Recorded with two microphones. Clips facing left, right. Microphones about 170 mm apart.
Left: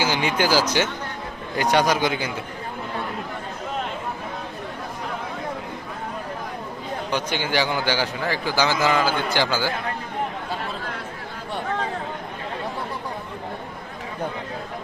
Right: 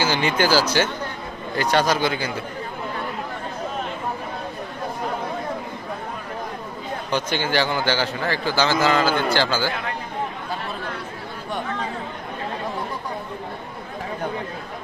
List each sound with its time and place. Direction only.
0.0 s a man's voice: 10° left (ahead or behind)
7.1 s a man's voice: 15° left (ahead or behind)